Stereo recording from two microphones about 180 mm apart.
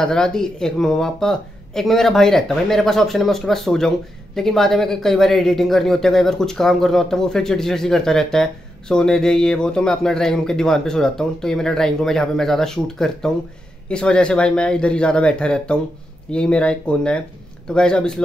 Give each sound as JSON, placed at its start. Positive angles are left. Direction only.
{"t": 0.0, "sound": "speech", "side_deg": 5}